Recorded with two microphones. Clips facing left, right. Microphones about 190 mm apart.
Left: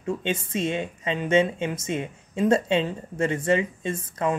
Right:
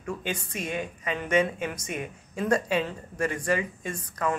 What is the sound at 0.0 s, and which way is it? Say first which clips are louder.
Speech: left 5 dB; 25° left (ahead or behind).